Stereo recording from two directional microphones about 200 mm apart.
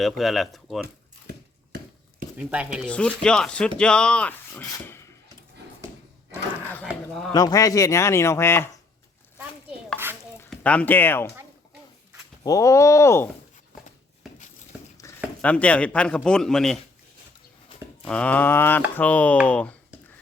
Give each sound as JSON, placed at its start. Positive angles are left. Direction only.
{"t": 0.0, "sound": "a man's voice", "side_deg": 0}
{"t": 2.4, "sound": "a man's voice", "side_deg": -5}
{"t": 2.8, "sound": "a man's voice", "side_deg": 5}
{"t": 6.8, "sound": "a sound", "side_deg": 0}
{"t": 7.3, "sound": "speech", "side_deg": 20}
{"t": 10.3, "sound": "speech", "side_deg": 5}
{"t": 12.4, "sound": "speech", "side_deg": 15}
{"t": 15.0, "sound": "a sound", "side_deg": 15}
{"t": 15.4, "sound": "a man's voice", "side_deg": 5}
{"t": 18.1, "sound": "speech", "side_deg": 5}